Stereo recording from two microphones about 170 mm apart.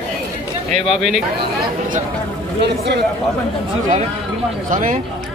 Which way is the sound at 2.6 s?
75° right (ahead or behind).